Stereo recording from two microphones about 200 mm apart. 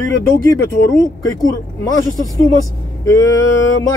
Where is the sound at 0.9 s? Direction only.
20° left (ahead or behind).